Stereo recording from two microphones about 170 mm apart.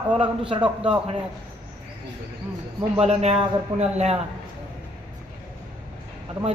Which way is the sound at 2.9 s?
40° right (ahead or behind).